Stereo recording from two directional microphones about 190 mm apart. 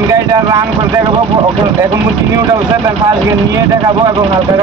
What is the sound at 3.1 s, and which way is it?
Speech, 20° right (ahead or behind).